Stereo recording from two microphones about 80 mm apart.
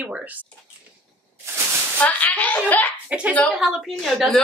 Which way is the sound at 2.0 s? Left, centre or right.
Left.